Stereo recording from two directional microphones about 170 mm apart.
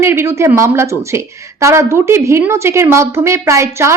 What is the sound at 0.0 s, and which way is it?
A woman's voice, 15° right (ahead or behind).